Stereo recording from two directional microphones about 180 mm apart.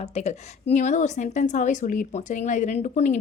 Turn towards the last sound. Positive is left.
turn(degrees=40)  # may be behind; listen again after turning